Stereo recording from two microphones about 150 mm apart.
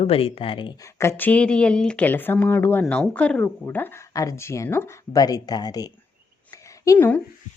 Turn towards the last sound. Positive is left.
turn(degrees=15)  # may be behind; listen again after turning